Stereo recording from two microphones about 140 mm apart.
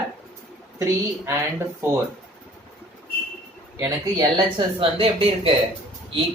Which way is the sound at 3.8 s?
20° right (ahead or behind).